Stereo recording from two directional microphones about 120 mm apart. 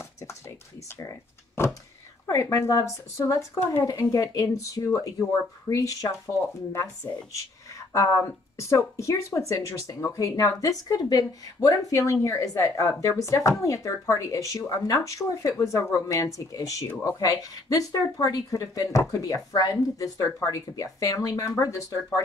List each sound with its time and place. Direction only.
0.9 s speech: 25° left (ahead or behind)
7.9 s speech: 25° left (ahead or behind)